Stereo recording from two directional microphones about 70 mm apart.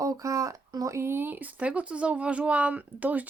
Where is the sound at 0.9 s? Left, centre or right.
Right.